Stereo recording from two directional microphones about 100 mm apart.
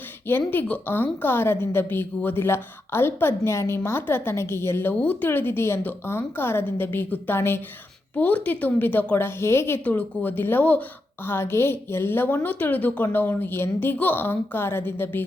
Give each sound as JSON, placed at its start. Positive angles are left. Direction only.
{"t": 0.3, "sound": "a woman's voice", "side_deg": 20}